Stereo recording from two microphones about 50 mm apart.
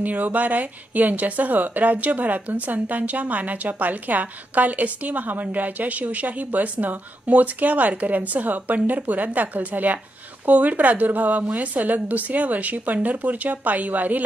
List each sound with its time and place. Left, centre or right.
0.0 s speech: right